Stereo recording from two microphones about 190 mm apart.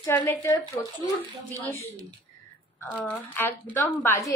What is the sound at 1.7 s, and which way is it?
Speech, 10° left (ahead or behind).